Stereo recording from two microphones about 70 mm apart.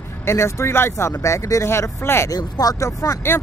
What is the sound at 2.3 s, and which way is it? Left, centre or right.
Speech, left.